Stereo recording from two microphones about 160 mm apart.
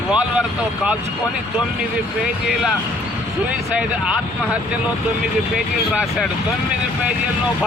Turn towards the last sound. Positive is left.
turn(degrees=0)  # may be behind; listen again after turning